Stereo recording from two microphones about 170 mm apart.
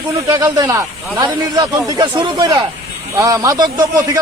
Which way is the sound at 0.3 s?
20° right (ahead or behind).